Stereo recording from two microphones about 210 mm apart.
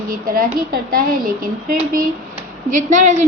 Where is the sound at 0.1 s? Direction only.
45° right (ahead or behind).